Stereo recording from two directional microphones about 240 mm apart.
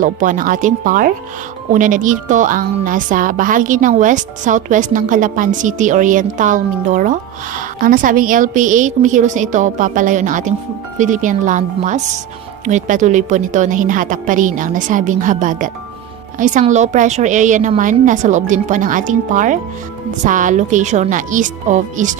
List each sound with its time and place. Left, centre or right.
0.0 s speech: right